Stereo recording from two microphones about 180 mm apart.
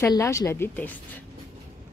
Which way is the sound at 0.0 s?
15° left (ahead or behind).